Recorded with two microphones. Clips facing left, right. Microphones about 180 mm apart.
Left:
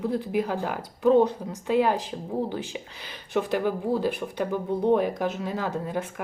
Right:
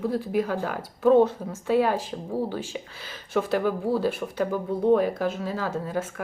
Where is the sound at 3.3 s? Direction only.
15° left (ahead or behind).